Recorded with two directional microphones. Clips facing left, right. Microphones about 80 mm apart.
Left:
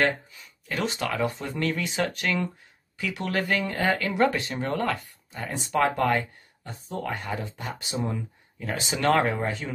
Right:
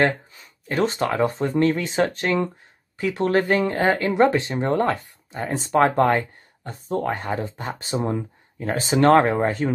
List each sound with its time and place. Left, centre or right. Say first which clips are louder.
0.0 s speech: right 4 dB; right